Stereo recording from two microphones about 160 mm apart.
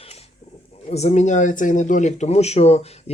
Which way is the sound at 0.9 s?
40° left (ahead or behind).